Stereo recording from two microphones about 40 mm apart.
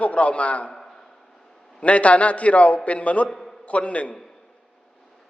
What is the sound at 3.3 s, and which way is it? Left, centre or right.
Speech, centre.